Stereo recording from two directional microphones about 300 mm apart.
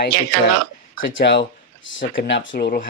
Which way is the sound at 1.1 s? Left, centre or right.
Left.